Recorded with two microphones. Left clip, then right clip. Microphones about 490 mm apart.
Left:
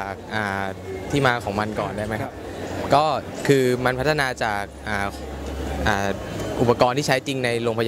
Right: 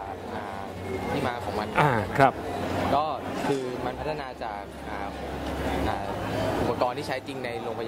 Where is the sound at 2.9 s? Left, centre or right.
Left.